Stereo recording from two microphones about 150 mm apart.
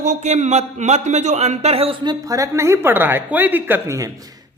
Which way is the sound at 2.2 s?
20° right (ahead or behind).